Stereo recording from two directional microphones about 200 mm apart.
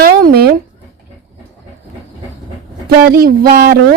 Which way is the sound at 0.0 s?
50° right (ahead or behind).